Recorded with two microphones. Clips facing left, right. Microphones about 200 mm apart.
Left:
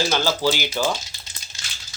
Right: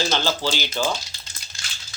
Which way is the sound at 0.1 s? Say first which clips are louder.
Left 3 dB; 10° left (ahead or behind).